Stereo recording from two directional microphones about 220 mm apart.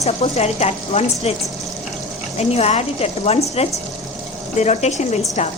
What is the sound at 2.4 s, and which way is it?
Speech, 30° left (ahead or behind).